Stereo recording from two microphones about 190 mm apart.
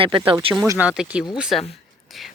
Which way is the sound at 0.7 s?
5° right (ahead or behind).